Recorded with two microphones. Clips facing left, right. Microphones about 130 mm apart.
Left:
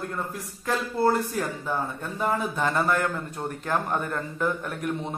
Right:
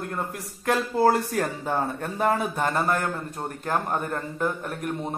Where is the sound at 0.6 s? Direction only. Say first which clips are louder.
Right 3 dB; 75° right (ahead or behind).